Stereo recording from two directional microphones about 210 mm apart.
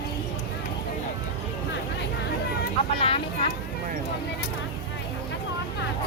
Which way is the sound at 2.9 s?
25° left (ahead or behind).